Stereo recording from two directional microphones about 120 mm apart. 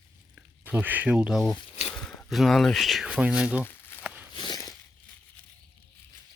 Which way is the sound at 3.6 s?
20° left (ahead or behind).